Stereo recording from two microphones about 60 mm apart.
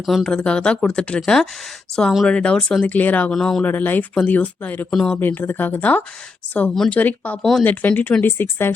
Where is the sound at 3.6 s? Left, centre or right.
Left.